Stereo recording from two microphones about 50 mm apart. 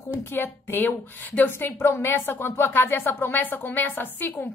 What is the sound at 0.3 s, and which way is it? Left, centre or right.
A woman's voice, left.